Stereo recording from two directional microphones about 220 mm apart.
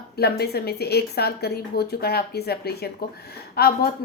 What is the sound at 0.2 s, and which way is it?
A woman's voice, 45° left (ahead or behind).